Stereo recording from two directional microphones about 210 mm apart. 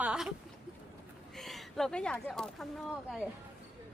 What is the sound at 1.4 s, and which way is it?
Speech, centre (ahead or behind).